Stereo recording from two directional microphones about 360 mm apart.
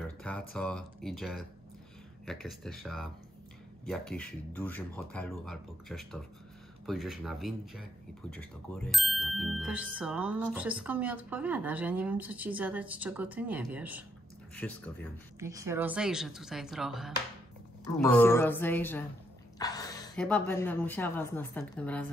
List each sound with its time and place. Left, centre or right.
0.0 s speech: centre
15.3 s speech: centre